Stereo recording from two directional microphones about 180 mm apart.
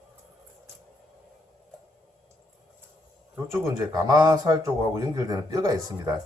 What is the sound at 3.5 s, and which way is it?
A man's voice, 20° right (ahead or behind).